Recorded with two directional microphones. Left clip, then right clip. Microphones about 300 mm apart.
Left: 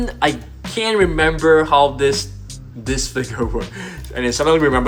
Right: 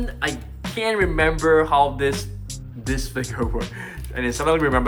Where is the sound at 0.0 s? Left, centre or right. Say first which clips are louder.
Left 8 dB; centre.